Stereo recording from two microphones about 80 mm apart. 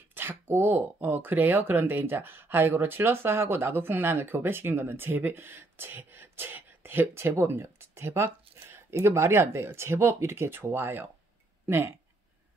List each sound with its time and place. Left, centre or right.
0.1 s speech: right